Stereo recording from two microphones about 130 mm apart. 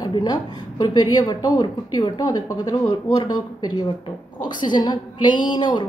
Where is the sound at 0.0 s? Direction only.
30° left (ahead or behind).